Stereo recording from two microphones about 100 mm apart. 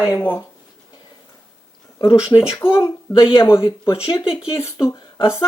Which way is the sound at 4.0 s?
60° left (ahead or behind).